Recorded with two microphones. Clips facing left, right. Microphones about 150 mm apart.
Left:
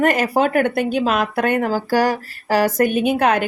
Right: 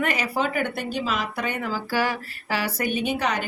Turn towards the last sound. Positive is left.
turn(degrees=55)  # may be behind; listen again after turning